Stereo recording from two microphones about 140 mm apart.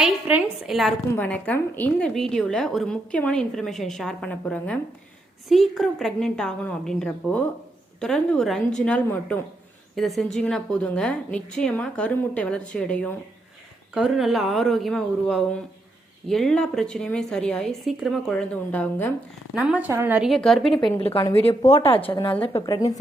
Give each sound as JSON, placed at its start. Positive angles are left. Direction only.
{"t": 0.0, "sound": "a sound", "side_deg": -10}
{"t": 0.7, "sound": "a woman's voice", "side_deg": 0}
{"t": 1.1, "sound": "a woman's voice", "side_deg": 10}
{"t": 9.9, "sound": "a woman's voice", "side_deg": 0}
{"t": 13.9, "sound": "a woman's voice", "side_deg": 0}
{"t": 19.5, "sound": "a woman's voice", "side_deg": -10}
{"t": 20.2, "sound": "a woman's voice", "side_deg": 5}
{"t": 21.0, "sound": "a woman's voice", "side_deg": 40}
{"t": 22.6, "sound": "a woman's voice", "side_deg": 25}